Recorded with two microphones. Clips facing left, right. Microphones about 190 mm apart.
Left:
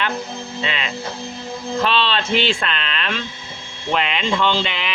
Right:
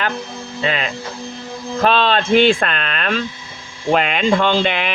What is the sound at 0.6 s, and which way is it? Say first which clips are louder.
Speech: right 5 dB; 45° right (ahead or behind).